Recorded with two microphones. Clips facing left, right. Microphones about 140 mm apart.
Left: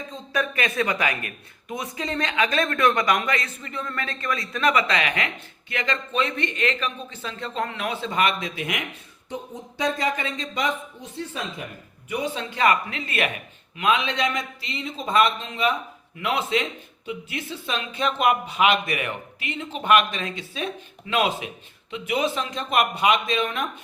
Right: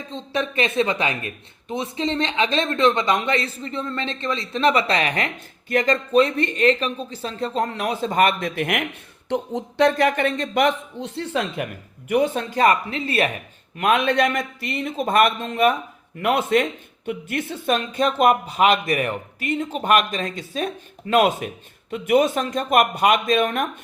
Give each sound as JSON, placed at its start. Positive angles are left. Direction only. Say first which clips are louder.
{"t": 0.1, "sound": "speech", "louder": "right 2 dB", "side_deg": -25}
{"t": 9.3, "sound": "speech", "louder": "right 9 dB", "side_deg": -75}
{"t": 13.7, "sound": "speech", "louder": "right 5 dB", "side_deg": -50}